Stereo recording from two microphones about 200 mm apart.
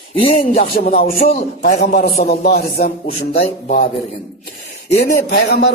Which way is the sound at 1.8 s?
45° left (ahead or behind).